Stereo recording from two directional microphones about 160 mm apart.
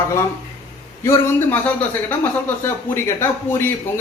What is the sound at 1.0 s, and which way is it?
Speech, 15° left (ahead or behind).